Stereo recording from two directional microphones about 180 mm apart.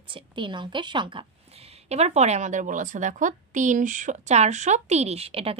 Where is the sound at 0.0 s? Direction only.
25° right (ahead or behind).